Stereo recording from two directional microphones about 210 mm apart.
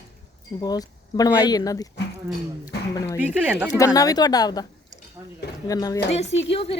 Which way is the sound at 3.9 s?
20° left (ahead or behind).